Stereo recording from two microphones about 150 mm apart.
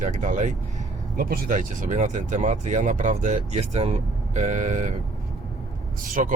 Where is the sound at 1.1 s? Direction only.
70° right (ahead or behind); by 4.9 s 55° right (ahead or behind).